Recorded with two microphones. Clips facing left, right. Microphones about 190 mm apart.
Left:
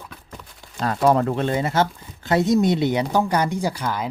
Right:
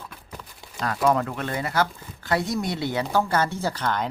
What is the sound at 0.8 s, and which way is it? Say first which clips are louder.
Speech: left 4 dB; 30° left (ahead or behind).